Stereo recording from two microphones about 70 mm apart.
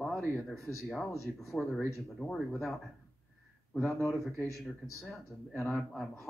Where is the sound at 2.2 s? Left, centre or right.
Centre.